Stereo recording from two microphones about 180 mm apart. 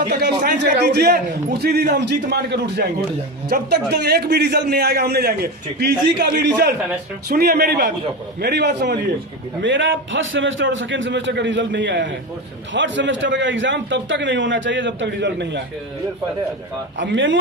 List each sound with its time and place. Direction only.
0.0 s a man's voice: 55° right (ahead or behind)
9.6 s a man's voice: 90° right
17.0 s a man's voice: 90° right